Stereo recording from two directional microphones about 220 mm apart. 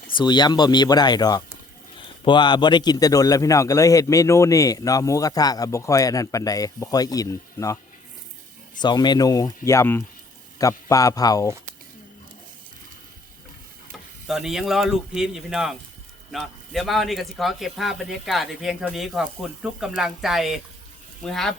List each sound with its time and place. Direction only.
0.2 s a man's voice: 20° left (ahead or behind)
8.8 s a man's voice: 20° left (ahead or behind)
14.3 s speech: centre (ahead or behind)